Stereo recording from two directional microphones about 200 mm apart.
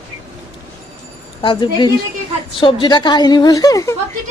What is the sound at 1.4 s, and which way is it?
Speech, 25° left (ahead or behind).